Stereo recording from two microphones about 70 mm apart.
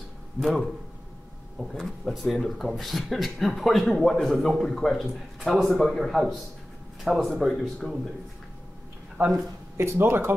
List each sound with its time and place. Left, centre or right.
0.4 s speech: centre
9.2 s speech: right
9.8 s speech: right